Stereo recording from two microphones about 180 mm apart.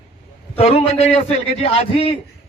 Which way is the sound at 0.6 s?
35° left (ahead or behind).